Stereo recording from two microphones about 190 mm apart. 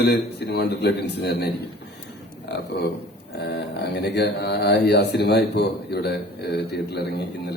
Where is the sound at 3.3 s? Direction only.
60° left (ahead or behind).